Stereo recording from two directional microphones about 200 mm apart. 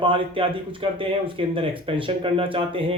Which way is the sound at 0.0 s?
25° right (ahead or behind).